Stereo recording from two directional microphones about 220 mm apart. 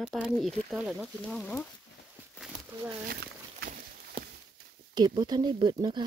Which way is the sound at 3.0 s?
45° right (ahead or behind).